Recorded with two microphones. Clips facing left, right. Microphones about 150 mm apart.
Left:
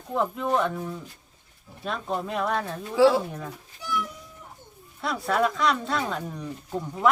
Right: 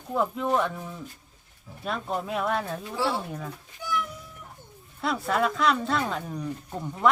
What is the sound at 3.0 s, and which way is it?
Speech, 90° left.